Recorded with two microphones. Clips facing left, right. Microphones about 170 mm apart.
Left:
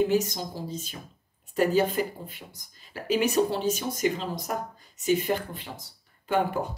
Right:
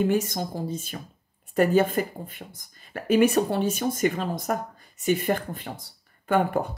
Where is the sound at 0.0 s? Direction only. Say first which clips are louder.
Right 1 dB; 55° right (ahead or behind).